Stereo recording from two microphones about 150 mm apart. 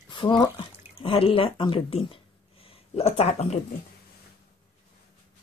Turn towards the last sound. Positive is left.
turn(degrees=45)  # may be behind; listen again after turning